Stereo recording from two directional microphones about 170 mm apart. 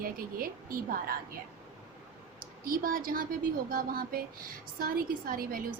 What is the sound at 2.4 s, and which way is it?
A woman's voice, 55° right (ahead or behind).